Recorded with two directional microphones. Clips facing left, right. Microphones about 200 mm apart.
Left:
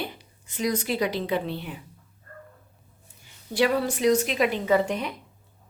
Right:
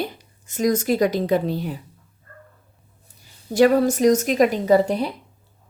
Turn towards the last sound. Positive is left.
turn(degrees=-35)  # may be behind; listen again after turning